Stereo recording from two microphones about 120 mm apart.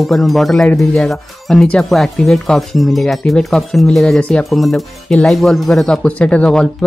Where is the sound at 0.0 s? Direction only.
Centre (ahead or behind).